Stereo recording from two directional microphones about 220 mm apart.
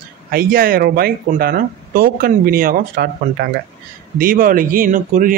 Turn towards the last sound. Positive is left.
turn(degrees=-40)  # may be behind; listen again after turning